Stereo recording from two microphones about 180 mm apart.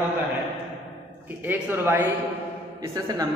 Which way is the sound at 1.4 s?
10° right (ahead or behind).